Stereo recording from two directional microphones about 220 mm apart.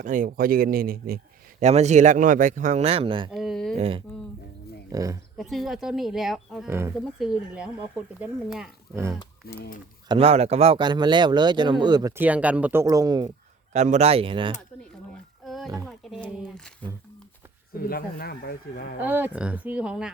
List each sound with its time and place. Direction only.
0.0 s a man's voice: 35° right (ahead or behind)
3.3 s a sound: centre (ahead or behind)
3.8 s speech: 25° right (ahead or behind)
4.9 s speech: 15° right (ahead or behind)
5.4 s a woman's voice: centre (ahead or behind)
9.4 s speech: 45° left (ahead or behind)
10.1 s speech: 25° right (ahead or behind)
13.7 s speech: 30° right (ahead or behind)
15.1 s roaring cats: centre (ahead or behind)
15.9 s a woman's voice: centre (ahead or behind)
17.7 s speech: 45° left (ahead or behind)
19.0 s speech: 10° right (ahead or behind)